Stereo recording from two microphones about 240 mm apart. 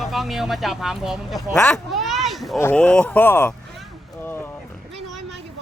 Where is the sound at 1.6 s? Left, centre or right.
Centre.